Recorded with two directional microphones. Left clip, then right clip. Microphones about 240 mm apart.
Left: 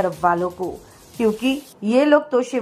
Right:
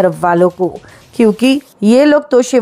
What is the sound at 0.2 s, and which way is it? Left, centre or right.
A woman's voice, right.